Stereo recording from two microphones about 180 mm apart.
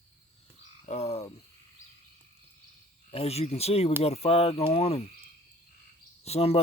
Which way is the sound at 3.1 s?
35° left (ahead or behind).